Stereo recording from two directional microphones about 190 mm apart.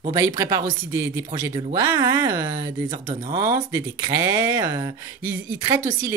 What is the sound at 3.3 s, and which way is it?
Speech, 15° right (ahead or behind).